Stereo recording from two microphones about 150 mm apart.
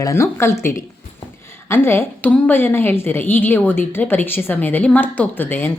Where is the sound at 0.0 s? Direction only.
20° left (ahead or behind).